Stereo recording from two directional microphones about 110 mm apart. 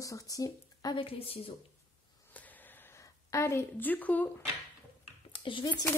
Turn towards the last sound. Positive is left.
turn(degrees=50)  # may be behind; listen again after turning